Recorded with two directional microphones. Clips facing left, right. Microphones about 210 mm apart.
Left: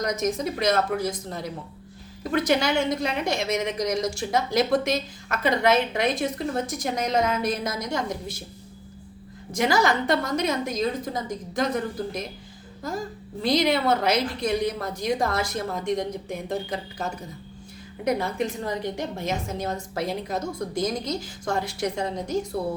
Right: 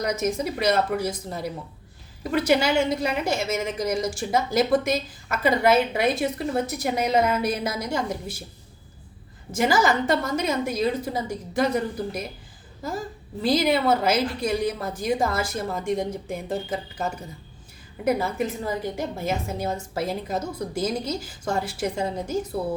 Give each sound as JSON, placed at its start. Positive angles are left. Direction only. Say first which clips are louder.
{"t": 0.0, "sound": "a woman's voice", "louder": "even", "side_deg": -5}
{"t": 9.6, "sound": "a woman's voice", "louder": "right 1 dB", "side_deg": -5}
{"t": 13.4, "sound": "a woman's voice", "louder": "right 1 dB", "side_deg": -5}
{"t": 18.0, "sound": "a woman's voice", "louder": "right 1 dB", "side_deg": -5}